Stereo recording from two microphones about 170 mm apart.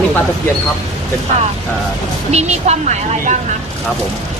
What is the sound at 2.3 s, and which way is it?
A woman's voice, 40° right (ahead or behind).